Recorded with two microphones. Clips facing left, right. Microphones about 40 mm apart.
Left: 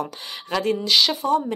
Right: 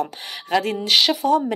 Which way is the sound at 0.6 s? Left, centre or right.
Right.